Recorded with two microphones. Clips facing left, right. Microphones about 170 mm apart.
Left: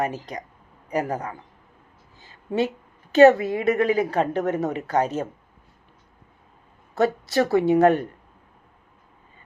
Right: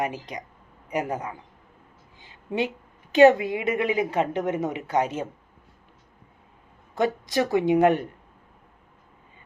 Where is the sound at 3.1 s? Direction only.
15° right (ahead or behind).